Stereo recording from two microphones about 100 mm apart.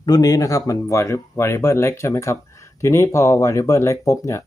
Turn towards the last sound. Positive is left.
turn(degrees=30)  # may be behind; listen again after turning